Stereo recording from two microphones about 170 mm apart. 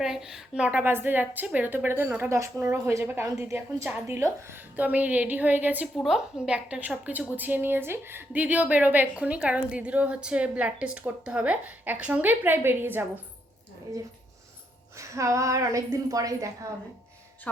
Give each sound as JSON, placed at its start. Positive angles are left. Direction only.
{"t": 0.0, "sound": "a woman's voice", "side_deg": -5}
{"t": 14.9, "sound": "a woman's voice", "side_deg": -20}